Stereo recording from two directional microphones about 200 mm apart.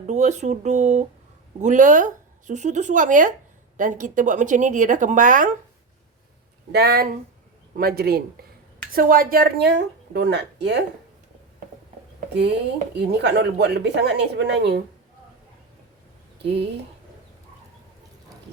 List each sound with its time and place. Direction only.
0.1 s a woman's voice: 35° right (ahead or behind)
6.7 s speech: 55° right (ahead or behind)
12.3 s speech: 60° right (ahead or behind)